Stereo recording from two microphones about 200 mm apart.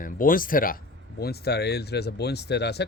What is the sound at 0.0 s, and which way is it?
Speech, 45° left (ahead or behind).